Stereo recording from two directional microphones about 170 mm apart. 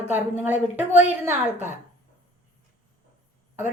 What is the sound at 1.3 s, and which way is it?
Speech, 45° right (ahead or behind).